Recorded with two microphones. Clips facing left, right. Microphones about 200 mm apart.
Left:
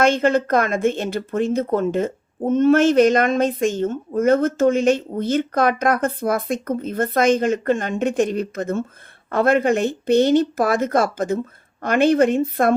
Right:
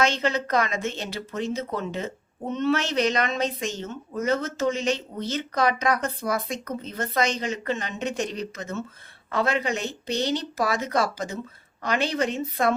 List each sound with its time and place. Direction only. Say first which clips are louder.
0.0 s speech: left 7 dB; 50° left (ahead or behind)